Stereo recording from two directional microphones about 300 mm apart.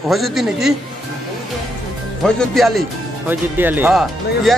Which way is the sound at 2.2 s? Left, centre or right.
Centre.